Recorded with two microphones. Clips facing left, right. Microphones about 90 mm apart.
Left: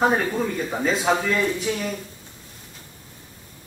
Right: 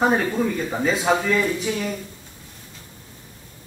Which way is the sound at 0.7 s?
5° right (ahead or behind).